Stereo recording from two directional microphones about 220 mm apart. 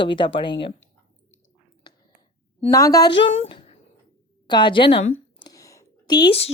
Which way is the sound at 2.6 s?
15° left (ahead or behind).